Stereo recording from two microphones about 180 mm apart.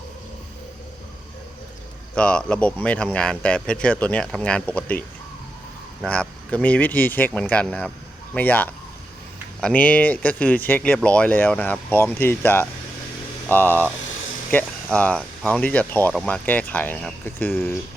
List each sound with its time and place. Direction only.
2.1 s speech: 5° left (ahead or behind)
6.1 s speech: 5° left (ahead or behind)